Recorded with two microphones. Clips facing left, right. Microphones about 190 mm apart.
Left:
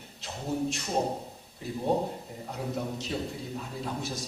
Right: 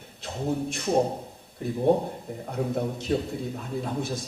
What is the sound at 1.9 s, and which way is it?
Speech, 55° right (ahead or behind).